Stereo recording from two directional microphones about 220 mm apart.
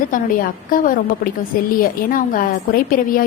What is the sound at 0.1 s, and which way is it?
A woman's voice, 40° left (ahead or behind).